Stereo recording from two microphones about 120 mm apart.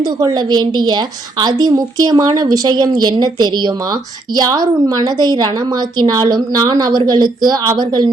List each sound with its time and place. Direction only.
0.2 s a woman's voice: 35° right (ahead or behind)